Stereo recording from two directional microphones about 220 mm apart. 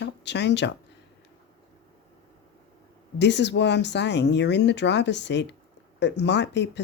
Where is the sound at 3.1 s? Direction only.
50° left (ahead or behind).